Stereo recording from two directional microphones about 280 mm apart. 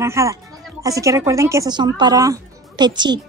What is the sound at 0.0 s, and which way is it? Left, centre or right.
Speech, centre.